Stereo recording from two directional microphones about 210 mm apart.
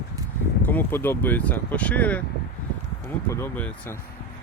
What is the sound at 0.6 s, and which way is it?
Speech, 10° left (ahead or behind).